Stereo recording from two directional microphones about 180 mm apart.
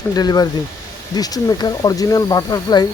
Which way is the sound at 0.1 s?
20° left (ahead or behind).